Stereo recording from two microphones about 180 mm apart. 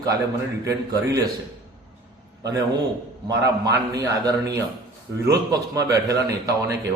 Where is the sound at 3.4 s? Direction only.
20° right (ahead or behind).